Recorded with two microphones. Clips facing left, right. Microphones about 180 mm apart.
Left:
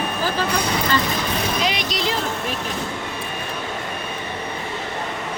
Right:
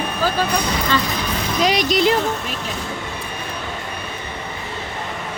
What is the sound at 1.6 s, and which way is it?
Speech, 40° right (ahead or behind).